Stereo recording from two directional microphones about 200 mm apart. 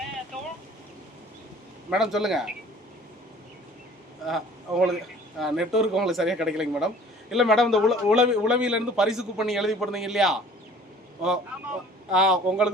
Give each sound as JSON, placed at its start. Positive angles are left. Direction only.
{"t": 1.9, "sound": "speech", "side_deg": 0}
{"t": 4.3, "sound": "speech", "side_deg": 0}
{"t": 12.1, "sound": "speech", "side_deg": -5}